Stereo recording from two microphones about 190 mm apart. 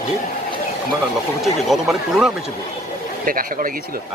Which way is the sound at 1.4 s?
Centre (ahead or behind).